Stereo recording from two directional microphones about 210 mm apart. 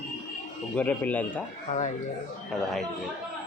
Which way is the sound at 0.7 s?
10° left (ahead or behind).